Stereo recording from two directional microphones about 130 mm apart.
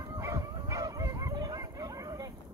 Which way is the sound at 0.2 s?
25° right (ahead or behind).